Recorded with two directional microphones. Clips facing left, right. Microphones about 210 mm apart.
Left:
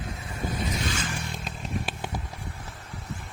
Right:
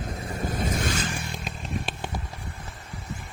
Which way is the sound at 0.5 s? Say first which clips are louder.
Right 3 dB; 50° right (ahead or behind).